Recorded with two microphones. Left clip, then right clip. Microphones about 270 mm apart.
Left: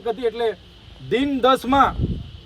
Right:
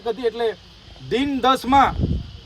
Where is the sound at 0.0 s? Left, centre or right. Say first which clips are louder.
Even; centre.